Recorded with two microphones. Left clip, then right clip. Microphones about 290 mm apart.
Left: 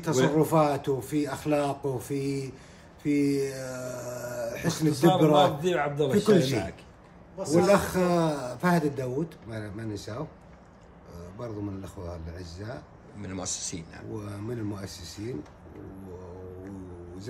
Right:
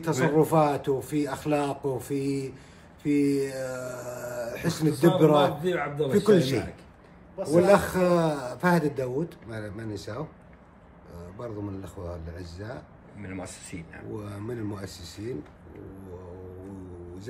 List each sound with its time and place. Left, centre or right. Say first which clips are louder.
0.0 s a man's voice: right 1 dB; centre